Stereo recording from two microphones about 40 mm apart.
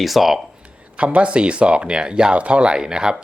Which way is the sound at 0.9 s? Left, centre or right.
Right.